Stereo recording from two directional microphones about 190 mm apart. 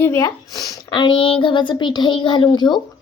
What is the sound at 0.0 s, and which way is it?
A child's voice, 15° left (ahead or behind).